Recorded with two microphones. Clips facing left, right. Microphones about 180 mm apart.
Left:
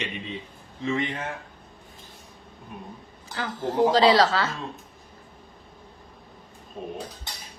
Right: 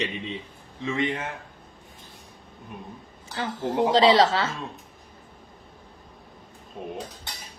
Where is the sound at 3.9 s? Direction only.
25° right (ahead or behind).